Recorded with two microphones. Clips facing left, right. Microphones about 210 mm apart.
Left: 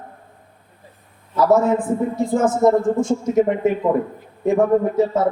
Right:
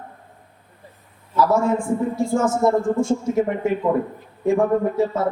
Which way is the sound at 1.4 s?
20° left (ahead or behind).